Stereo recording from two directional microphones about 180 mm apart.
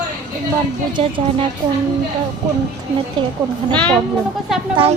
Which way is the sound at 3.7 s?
5° left (ahead or behind).